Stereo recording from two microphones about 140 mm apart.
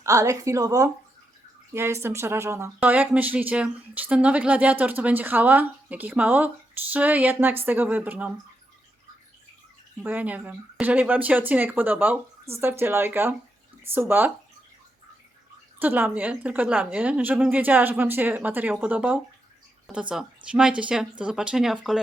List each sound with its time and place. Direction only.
0.0 s speech: 25° right (ahead or behind)
10.0 s speech: 10° right (ahead or behind)
15.8 s speech: 15° right (ahead or behind)